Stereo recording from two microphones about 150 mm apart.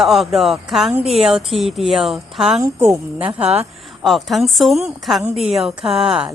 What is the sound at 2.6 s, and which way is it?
Speech, 20° right (ahead or behind).